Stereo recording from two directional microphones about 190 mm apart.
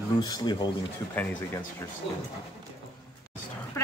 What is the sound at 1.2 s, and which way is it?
Speech, 10° left (ahead or behind).